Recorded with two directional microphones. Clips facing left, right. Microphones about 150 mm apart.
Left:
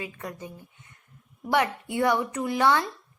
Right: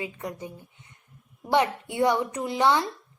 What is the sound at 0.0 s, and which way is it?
A woman's voice, 20° right (ahead or behind).